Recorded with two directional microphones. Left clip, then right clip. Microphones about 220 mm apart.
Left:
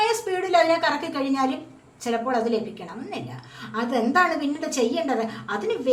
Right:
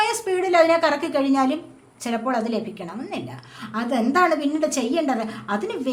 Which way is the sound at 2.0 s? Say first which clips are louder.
Left 1 dB; 40° right (ahead or behind).